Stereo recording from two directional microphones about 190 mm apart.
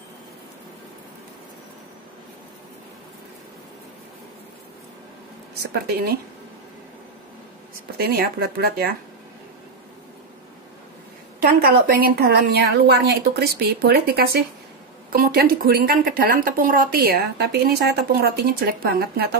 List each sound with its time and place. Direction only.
5.6 s a woman's voice: 55° right (ahead or behind)
8.0 s a woman's voice: 55° right (ahead or behind)
11.3 s a woman's voice: 55° right (ahead or behind)